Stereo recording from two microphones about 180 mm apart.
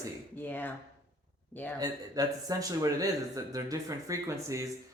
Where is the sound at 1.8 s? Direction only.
20° right (ahead or behind).